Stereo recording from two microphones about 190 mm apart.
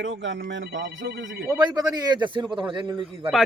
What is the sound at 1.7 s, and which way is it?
A man's voice, 20° right (ahead or behind).